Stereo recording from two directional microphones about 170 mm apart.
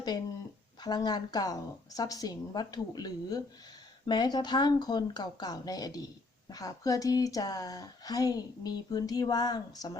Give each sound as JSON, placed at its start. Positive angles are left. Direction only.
{"t": 0.8, "sound": "speech", "side_deg": 25}